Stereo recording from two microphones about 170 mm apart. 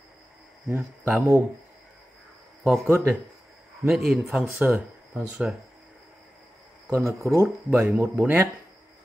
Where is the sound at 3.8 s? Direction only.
Centre (ahead or behind).